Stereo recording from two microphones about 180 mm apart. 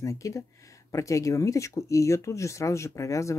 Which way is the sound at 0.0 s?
15° left (ahead or behind).